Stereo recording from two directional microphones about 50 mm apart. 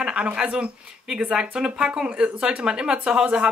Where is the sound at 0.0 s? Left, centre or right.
Right.